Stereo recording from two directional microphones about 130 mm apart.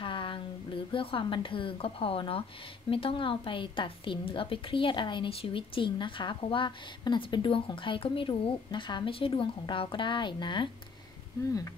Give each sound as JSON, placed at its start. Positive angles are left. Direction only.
{"t": 0.0, "sound": "a woman's voice", "side_deg": 40}